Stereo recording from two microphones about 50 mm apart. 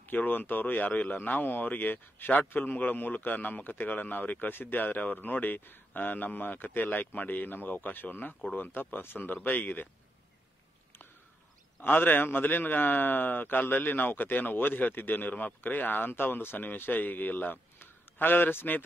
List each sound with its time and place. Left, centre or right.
0.1 s a man's voice: left
11.8 s a man's voice: left
17.7 s a sound: left